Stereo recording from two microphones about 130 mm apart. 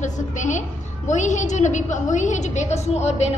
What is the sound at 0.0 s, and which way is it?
A woman's voice, 70° left (ahead or behind).